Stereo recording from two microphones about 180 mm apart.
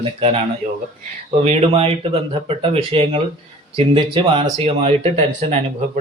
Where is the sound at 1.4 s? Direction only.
35° right (ahead or behind).